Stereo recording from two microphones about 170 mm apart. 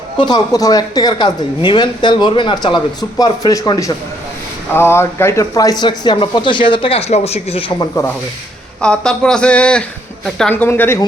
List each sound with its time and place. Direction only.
0.2 s a woman's voice: 25° left (ahead or behind)
7.8 s speech: 15° left (ahead or behind)
8.8 s speech: 5° left (ahead or behind)